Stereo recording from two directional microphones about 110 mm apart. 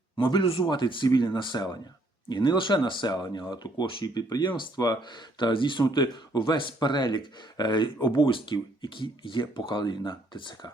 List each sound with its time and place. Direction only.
0.2 s speech: 50° left (ahead or behind)